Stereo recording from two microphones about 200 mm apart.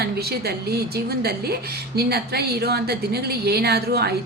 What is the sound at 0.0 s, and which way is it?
A woman's voice, 50° right (ahead or behind).